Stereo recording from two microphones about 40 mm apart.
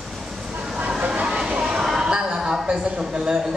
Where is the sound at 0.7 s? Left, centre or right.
Right.